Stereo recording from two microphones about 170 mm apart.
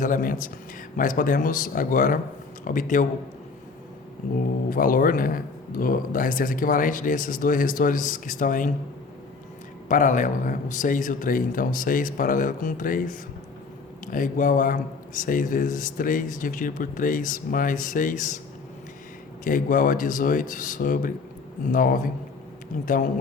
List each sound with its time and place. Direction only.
0.0 s speech: 55° left (ahead or behind)
4.2 s speech: 55° left (ahead or behind)
9.9 s speech: 50° left (ahead or behind)
19.5 s speech: 55° left (ahead or behind)